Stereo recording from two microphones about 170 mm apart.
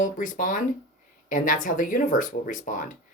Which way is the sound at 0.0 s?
50° left (ahead or behind).